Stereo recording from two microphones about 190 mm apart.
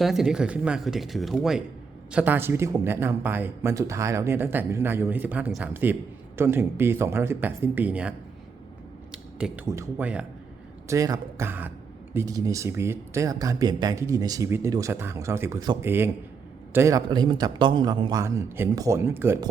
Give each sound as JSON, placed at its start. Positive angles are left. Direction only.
{"t": 0.0, "sound": "speech", "side_deg": 0}
{"t": 9.1, "sound": "a sound", "side_deg": -5}
{"t": 9.6, "sound": "speech", "side_deg": -15}
{"t": 10.8, "sound": "a man's voice", "side_deg": -20}